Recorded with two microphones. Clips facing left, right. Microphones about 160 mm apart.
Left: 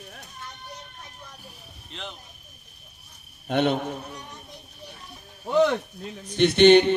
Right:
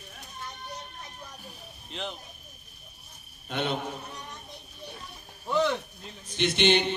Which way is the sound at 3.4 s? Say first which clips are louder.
Left 8 dB; 60° left (ahead or behind).